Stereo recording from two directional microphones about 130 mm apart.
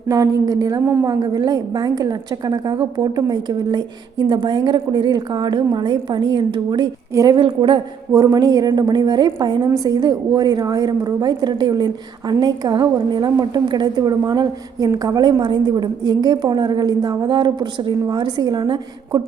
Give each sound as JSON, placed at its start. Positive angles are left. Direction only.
{"t": 0.1, "sound": "a woman's voice", "side_deg": -30}
{"t": 7.1, "sound": "a woman's voice", "side_deg": -25}
{"t": 7.3, "sound": "a woman's voice", "side_deg": -40}